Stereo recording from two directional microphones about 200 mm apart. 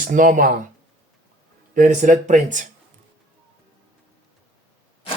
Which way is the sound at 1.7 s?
40° right (ahead or behind).